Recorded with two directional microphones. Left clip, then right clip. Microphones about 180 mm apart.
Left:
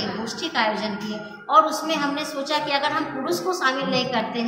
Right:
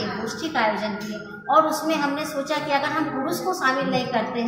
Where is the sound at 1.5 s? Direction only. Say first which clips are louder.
Left 1 dB; 5° left (ahead or behind).